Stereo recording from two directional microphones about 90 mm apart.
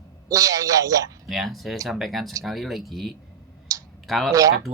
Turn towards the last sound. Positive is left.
turn(degrees=0)  # may be behind; listen again after turning